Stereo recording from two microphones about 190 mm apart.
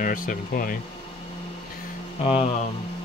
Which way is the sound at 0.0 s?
45° left (ahead or behind).